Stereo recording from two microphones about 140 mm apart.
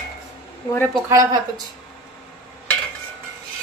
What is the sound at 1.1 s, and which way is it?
Speech, 25° right (ahead or behind).